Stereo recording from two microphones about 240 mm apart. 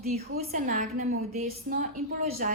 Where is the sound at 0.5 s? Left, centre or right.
Right.